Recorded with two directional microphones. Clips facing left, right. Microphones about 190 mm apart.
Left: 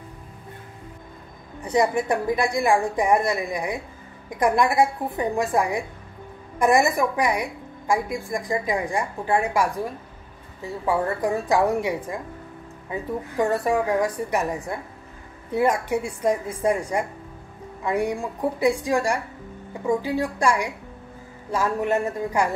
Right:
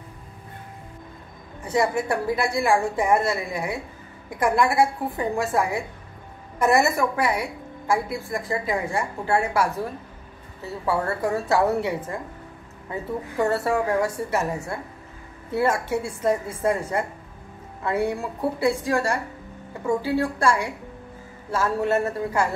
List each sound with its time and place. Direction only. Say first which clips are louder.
1.6 s a woman's voice: left 2 dB; 20° left (ahead or behind)